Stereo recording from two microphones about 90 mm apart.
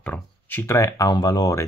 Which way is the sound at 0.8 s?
45° left (ahead or behind).